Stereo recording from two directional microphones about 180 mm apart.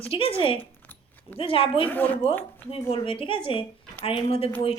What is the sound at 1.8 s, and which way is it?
Speech, 10° left (ahead or behind).